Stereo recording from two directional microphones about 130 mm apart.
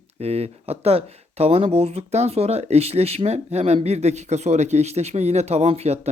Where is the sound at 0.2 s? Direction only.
55° right (ahead or behind).